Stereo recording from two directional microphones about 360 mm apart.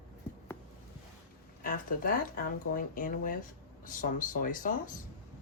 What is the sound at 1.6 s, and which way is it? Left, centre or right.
Speech, left.